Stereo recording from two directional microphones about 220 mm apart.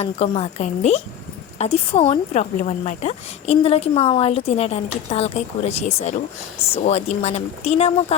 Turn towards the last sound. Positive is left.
turn(degrees=30)  # may be behind; listen again after turning